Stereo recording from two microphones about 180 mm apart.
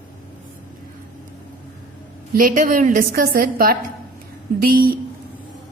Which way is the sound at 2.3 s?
50° right (ahead or behind).